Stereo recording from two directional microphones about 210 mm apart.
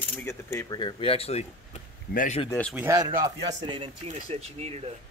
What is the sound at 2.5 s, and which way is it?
Speech, 5° left (ahead or behind).